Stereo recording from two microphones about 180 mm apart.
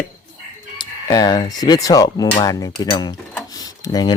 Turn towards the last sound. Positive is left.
turn(degrees=20)  # may be behind; listen again after turning